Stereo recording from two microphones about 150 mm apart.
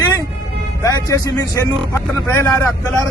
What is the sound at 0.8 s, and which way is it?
Speech, 25° left (ahead or behind).